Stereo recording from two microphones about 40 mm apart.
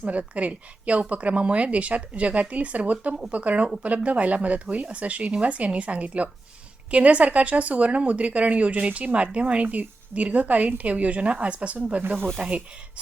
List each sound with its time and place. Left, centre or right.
0.0 s a woman's voice: right